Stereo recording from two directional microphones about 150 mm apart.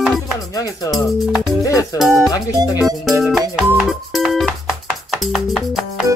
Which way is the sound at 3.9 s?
Centre (ahead or behind).